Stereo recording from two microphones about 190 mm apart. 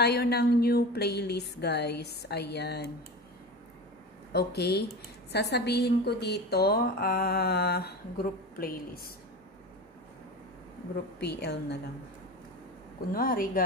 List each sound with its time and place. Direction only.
0.0 s a woman's voice: 55° left (ahead or behind)
4.3 s a woman's voice: 60° left (ahead or behind)
11.1 s a woman's voice: 60° left (ahead or behind)
13.1 s a woman's voice: 50° left (ahead or behind)